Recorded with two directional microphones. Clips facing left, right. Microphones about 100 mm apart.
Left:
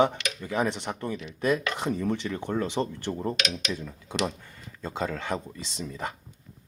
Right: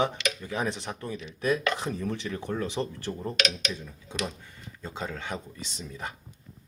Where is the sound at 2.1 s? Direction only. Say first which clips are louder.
Left 3 dB; 25° left (ahead or behind).